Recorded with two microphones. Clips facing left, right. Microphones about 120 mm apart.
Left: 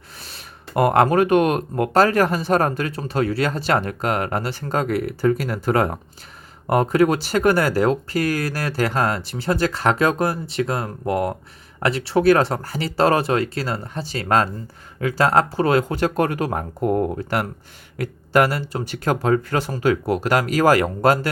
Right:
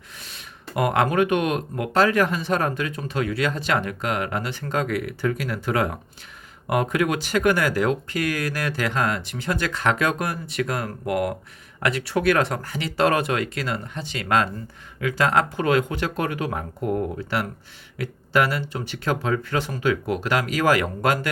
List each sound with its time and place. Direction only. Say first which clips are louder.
0.2 s speech: left 3 dB; 35° left (ahead or behind)